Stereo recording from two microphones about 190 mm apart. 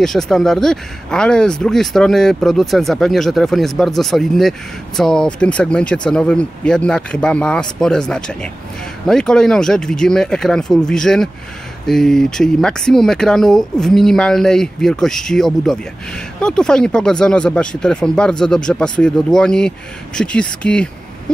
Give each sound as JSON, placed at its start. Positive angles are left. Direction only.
{"t": 0.0, "sound": "speech", "side_deg": 0}